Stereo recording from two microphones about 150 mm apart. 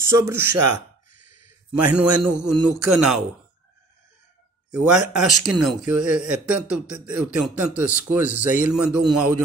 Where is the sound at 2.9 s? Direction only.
5° right (ahead or behind).